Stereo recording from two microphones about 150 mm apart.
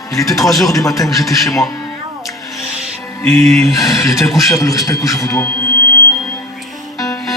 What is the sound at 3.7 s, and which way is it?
Speech, 20° left (ahead or behind).